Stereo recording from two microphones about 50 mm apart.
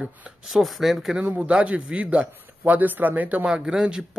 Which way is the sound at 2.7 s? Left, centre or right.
Right.